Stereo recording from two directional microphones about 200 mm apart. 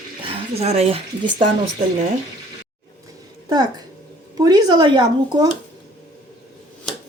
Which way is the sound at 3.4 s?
20° right (ahead or behind).